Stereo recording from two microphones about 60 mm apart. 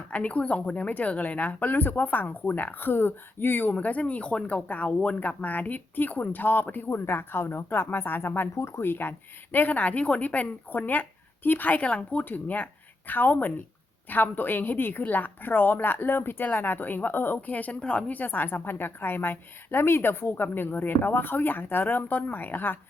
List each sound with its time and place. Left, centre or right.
0.1 s speech: left
8.5 s speech: left